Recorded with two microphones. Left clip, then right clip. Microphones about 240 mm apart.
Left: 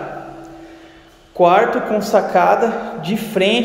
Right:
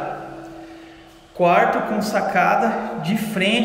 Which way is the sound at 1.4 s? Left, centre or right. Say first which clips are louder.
Left 3 dB; centre.